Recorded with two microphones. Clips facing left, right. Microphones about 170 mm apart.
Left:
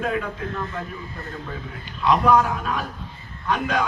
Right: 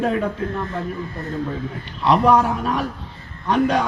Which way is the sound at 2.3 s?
30° right (ahead or behind).